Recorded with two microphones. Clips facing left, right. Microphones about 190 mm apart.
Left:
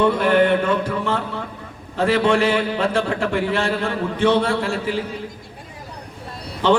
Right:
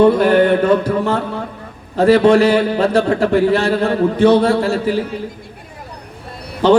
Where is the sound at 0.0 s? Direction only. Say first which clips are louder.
Right 5 dB; 40° right (ahead or behind).